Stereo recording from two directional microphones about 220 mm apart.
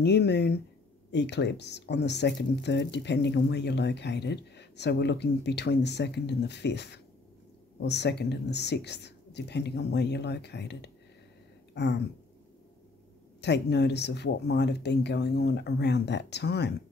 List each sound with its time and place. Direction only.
0.0 s speech: 50° left (ahead or behind)
11.7 s a sound: 50° left (ahead or behind)
13.4 s speech: 50° left (ahead or behind)